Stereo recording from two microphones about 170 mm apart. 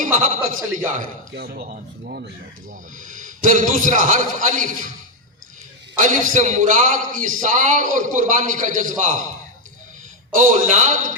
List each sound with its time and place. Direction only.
0.0 s a man's voice: 50° right (ahead or behind)
1.4 s a man's voice: 60° right (ahead or behind)
6.0 s a man's voice: 50° right (ahead or behind)
10.3 s a man's voice: 45° right (ahead or behind)